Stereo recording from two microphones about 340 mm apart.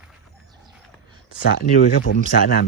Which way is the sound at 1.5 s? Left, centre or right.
Left.